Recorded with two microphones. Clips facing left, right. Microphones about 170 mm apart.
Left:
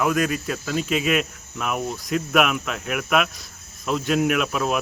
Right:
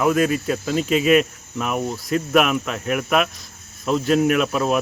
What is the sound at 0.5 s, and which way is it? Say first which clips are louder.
Speech: right 4 dB; 30° right (ahead or behind).